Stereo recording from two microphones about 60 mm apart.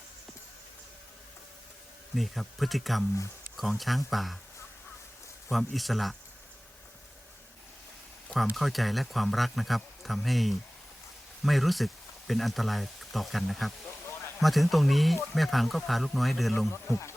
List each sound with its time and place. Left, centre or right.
2.1 s speech: centre
5.5 s speech: centre
8.5 s speech: centre
16.7 s speech: left